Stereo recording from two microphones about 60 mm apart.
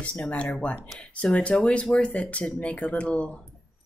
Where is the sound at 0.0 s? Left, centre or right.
Left.